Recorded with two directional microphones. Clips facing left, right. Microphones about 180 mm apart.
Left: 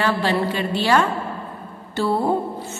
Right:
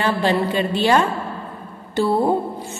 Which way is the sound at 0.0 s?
20° right (ahead or behind).